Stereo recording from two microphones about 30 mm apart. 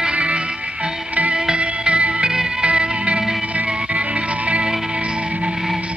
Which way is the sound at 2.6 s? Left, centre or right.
Right.